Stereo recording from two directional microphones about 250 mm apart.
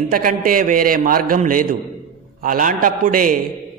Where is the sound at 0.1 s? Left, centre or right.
Right.